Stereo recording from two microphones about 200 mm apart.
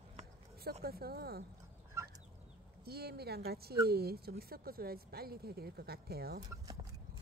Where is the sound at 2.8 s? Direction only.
50° right (ahead or behind).